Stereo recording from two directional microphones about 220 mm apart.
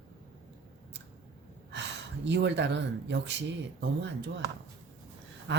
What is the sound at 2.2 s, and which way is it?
Speech, 55° right (ahead or behind).